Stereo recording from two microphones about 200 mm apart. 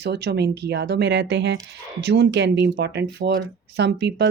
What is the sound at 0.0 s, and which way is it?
Speech, 55° right (ahead or behind).